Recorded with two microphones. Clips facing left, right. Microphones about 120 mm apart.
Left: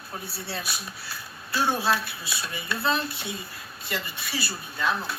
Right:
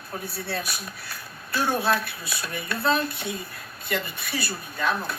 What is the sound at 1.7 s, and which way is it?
Speech, centre (ahead or behind).